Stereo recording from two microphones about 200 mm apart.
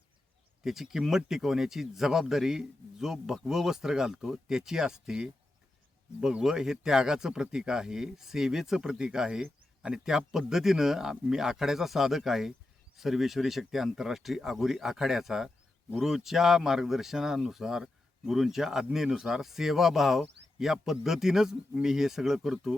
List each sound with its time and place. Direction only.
0.6 s speech: centre (ahead or behind)